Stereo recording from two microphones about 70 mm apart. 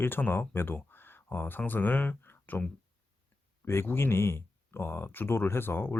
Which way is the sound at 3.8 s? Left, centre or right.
Left.